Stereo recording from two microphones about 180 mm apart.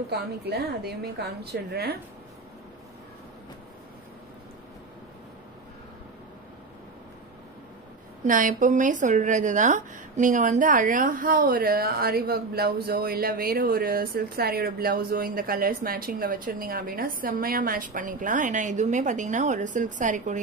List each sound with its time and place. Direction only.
0.1 s a woman's voice: 65° right (ahead or behind)
8.3 s speech: 45° right (ahead or behind)